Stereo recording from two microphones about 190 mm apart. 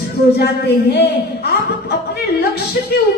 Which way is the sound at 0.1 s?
60° left (ahead or behind).